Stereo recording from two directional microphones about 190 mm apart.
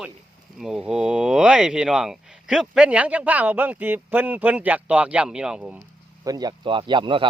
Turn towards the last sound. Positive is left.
turn(degrees=-25)  # may be behind; listen again after turning